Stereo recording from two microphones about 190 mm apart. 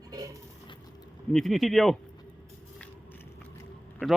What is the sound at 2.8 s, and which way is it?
Biting, 10° left (ahead or behind).